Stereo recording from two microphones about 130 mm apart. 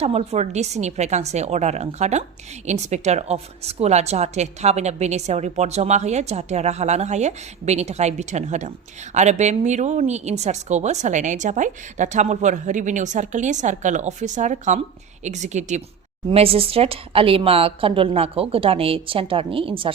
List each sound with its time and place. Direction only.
0.0 s a woman's voice: 55° right (ahead or behind)
16.3 s a woman's voice: 45° right (ahead or behind)